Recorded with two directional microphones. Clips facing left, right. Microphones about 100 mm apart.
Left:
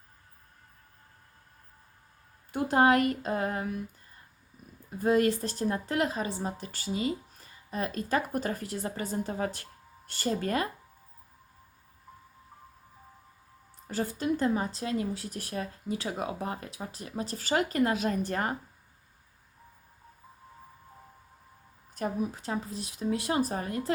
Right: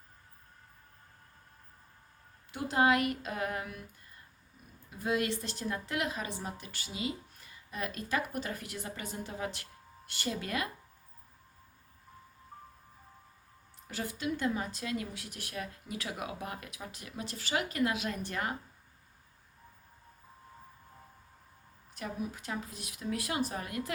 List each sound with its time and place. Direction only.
2.5 s speech: 50° left (ahead or behind); by 3.8 s 30° left (ahead or behind)
4.9 s speech: 45° left (ahead or behind)
13.8 s speech: 40° left (ahead or behind)
21.9 s speech: 40° left (ahead or behind)